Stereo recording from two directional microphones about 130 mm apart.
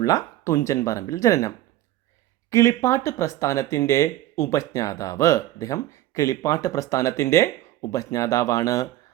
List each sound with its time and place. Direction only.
0.0 s speech: 25° left (ahead or behind)